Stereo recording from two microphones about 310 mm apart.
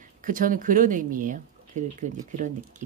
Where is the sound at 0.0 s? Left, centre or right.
Right.